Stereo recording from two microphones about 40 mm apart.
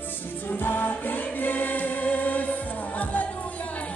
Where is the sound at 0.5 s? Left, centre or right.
Left.